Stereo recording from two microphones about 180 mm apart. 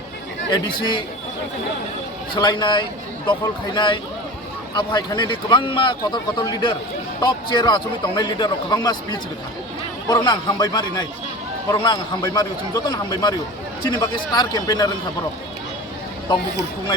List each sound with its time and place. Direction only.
2.3 s a man's voice: 25° left (ahead or behind)